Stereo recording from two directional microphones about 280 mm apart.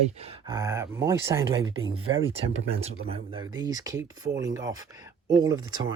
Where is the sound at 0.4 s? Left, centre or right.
Centre.